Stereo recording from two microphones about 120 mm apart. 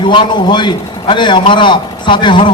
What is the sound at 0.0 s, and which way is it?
A man's voice, 40° left (ahead or behind).